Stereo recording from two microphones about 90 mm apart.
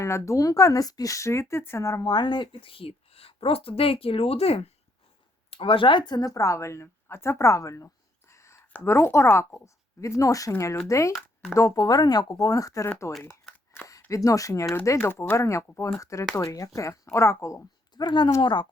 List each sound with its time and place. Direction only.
0.0 s speech: 35° left (ahead or behind)
2.0 s speech: 55° left (ahead or behind); by 7.9 s 35° left (ahead or behind)
8.3 s whispering: 30° left (ahead or behind)
8.7 s speech: 30° left (ahead or behind)
14.3 s speech: 40° left (ahead or behind)
17.9 s a woman's voice: 60° left (ahead or behind)